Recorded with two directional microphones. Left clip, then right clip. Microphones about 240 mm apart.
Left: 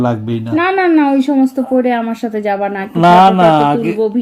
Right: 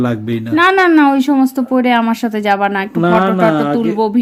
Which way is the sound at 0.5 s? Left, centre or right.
Right.